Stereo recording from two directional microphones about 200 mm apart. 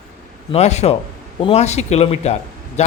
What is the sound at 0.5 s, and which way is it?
Speech, 35° left (ahead or behind).